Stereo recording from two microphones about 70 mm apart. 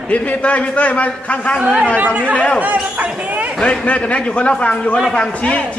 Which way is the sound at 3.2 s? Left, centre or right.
Right.